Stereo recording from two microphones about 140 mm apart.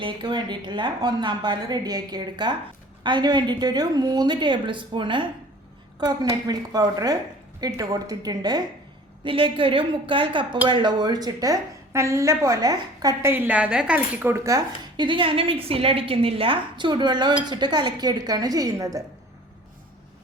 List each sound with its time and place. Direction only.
0.0 s a woman's voice: 35° right (ahead or behind)
9.2 s a woman's voice: 40° right (ahead or behind)
13.3 s speech: 10° right (ahead or behind)